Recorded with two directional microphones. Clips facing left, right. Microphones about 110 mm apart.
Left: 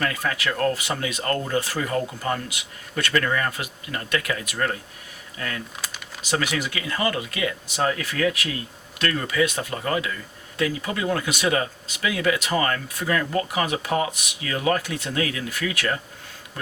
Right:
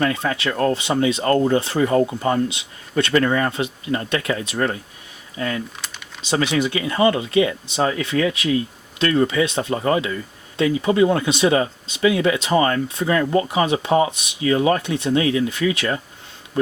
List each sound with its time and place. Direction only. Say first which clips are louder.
0.0 s speech: right 5 dB; 25° right (ahead or behind)